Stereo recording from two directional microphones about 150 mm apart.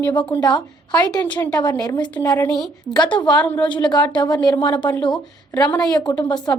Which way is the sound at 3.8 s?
30° left (ahead or behind).